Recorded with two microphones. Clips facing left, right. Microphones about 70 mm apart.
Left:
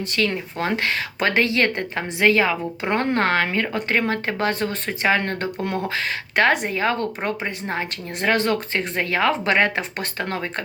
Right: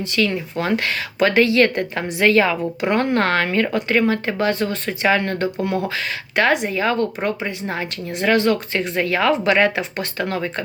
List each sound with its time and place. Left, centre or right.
0.0 s speech: left
0.6 s a woman's voice: left
2.9 s a woman's voice: left
3.8 s speech: left